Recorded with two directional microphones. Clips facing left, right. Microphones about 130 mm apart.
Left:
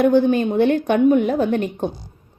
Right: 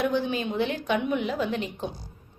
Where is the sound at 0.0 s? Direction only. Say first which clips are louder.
Left 11 dB; 55° left (ahead or behind).